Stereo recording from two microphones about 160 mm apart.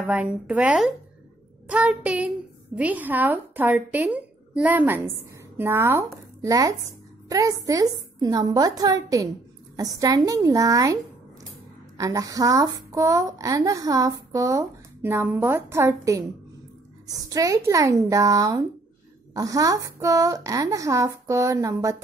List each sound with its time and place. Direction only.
0.0 s a woman's voice: 10° right (ahead or behind)
12.0 s speech: 20° right (ahead or behind)